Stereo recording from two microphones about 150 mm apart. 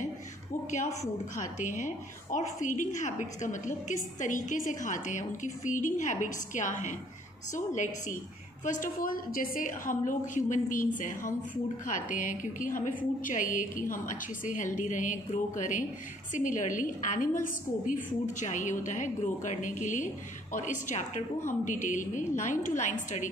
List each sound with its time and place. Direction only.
1.3 s a woman's voice: 55° left (ahead or behind)